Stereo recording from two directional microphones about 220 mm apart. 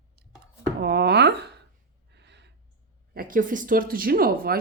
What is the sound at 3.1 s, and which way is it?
Speech, 40° right (ahead or behind).